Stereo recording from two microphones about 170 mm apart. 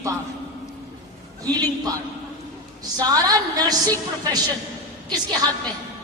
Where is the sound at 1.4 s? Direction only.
20° right (ahead or behind).